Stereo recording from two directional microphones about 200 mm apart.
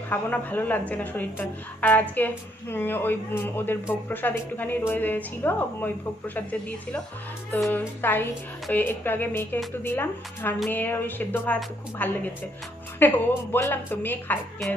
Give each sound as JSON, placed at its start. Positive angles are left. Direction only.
{"t": 0.1, "sound": "a woman's voice", "side_deg": 10}
{"t": 7.5, "sound": "a woman's voice", "side_deg": 10}